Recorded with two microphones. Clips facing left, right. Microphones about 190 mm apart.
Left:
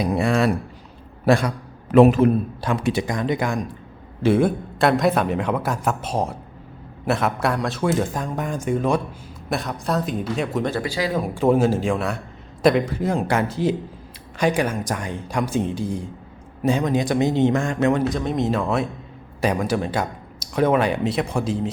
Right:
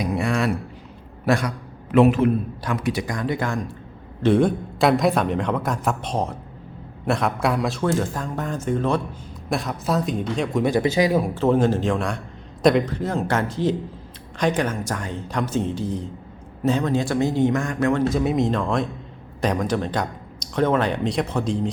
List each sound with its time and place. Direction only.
0.0 s a man's voice: 30° left (ahead or behind)
2.6 s a man's voice: 30° left (ahead or behind); by 7.9 s centre (ahead or behind)
7.9 s speech: 15° left (ahead or behind)
9.5 s a man's voice: centre (ahead or behind)
10.6 s speech: 15° right (ahead or behind)
11.3 s speech: 10° left (ahead or behind)
18.1 s a man's voice: 5° right (ahead or behind)